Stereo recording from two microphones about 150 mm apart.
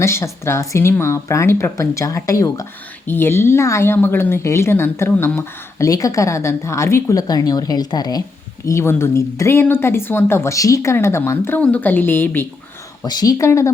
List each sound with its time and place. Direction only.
0.0 s speech: 15° left (ahead or behind)
13.0 s speech: 25° left (ahead or behind)